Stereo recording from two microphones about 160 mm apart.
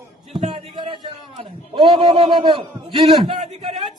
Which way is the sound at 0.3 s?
35° right (ahead or behind).